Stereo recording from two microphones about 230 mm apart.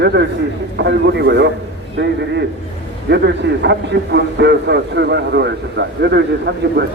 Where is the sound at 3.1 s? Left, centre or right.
Right.